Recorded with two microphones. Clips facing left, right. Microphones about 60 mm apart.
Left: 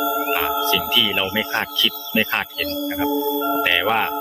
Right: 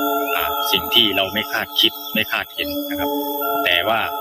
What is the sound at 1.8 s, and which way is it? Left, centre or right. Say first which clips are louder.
Music: even; centre.